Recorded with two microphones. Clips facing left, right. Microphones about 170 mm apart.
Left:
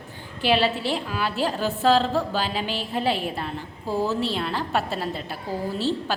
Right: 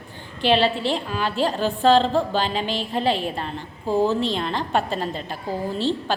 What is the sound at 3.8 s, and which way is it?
Speech, 15° right (ahead or behind).